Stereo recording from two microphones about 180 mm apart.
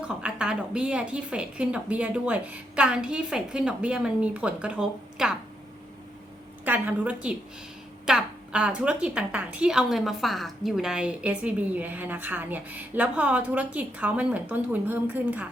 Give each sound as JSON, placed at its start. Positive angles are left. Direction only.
{"t": 0.0, "sound": "a woman's voice", "side_deg": -5}
{"t": 6.7, "sound": "a woman's voice", "side_deg": -10}